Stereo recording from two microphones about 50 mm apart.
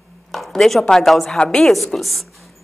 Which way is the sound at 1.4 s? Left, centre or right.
Centre.